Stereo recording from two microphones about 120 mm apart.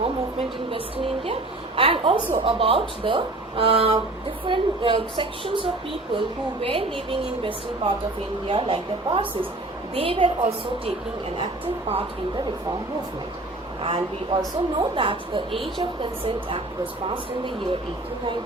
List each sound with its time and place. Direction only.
0.0 s a woman's voice: 55° right (ahead or behind)
13.8 s speech: 45° right (ahead or behind)